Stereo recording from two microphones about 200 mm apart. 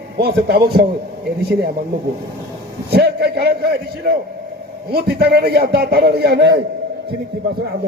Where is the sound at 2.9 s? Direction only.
55° right (ahead or behind).